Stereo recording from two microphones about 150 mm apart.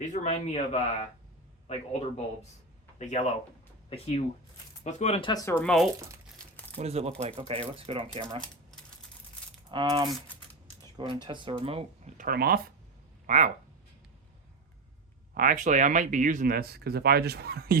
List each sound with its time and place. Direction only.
0.0 s a man's voice: 50° left (ahead or behind)
5.3 s speech: 20° left (ahead or behind)
5.6 s speech: centre (ahead or behind)
6.7 s speech: 45° right (ahead or behind)
8.4 s typing: 5° left (ahead or behind)
9.7 s speech: 35° right (ahead or behind)
12.1 s speech: 75° right (ahead or behind)
13.2 s speech: 55° right (ahead or behind)
15.4 s speech: 60° right (ahead or behind); by 17.7 s 90° right